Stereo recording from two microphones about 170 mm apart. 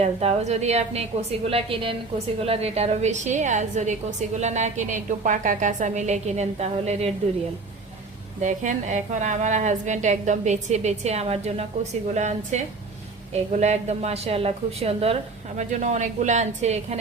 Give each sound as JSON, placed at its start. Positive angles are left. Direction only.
{"t": 0.0, "sound": "a woman's voice", "side_deg": -40}
{"t": 8.4, "sound": "a woman's voice", "side_deg": -45}